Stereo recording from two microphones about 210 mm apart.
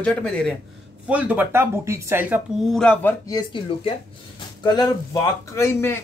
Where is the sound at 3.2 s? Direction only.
20° left (ahead or behind).